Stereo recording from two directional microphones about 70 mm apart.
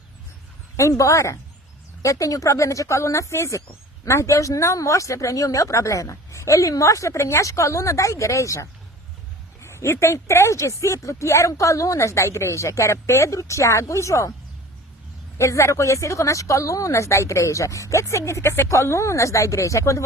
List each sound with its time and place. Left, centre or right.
0.8 s speech: left
15.4 s speech: left